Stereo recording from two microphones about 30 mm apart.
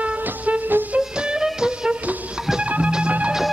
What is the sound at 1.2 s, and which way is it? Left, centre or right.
Music, right.